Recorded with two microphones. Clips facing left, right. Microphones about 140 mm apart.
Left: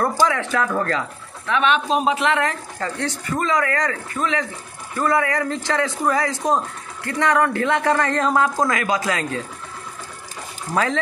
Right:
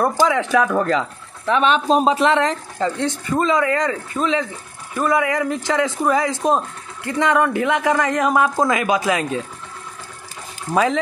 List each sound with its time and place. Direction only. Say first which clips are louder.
0.0 s speech: right 2 dB; 15° right (ahead or behind)
1.5 s speech: right 3 dB; 35° right (ahead or behind); by 9.4 s 20° right (ahead or behind)
10.7 s speech: right 4 dB; 15° right (ahead or behind)